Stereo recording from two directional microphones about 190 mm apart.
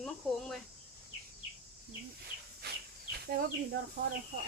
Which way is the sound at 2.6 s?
60° right (ahead or behind).